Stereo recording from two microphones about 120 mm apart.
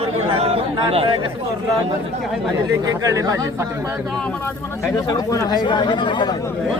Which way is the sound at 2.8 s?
30° right (ahead or behind).